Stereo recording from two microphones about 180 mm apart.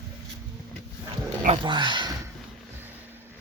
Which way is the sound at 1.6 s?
25° right (ahead or behind).